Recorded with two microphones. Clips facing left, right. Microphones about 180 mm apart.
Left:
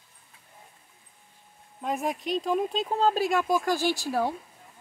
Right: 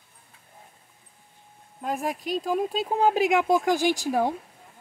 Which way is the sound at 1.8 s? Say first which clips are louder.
Even; centre (ahead or behind).